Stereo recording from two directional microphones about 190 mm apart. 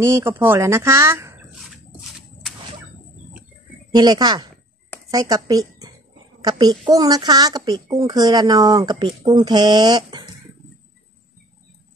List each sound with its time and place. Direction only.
0.0 s speech: 15° right (ahead or behind)
2.0 s a sound: 5° right (ahead or behind)
3.9 s speech: 20° right (ahead or behind)